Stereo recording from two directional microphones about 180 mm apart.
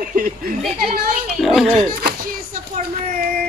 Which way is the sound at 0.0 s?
50° right (ahead or behind).